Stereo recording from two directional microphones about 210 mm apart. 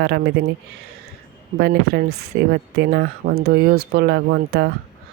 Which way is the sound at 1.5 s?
50° right (ahead or behind).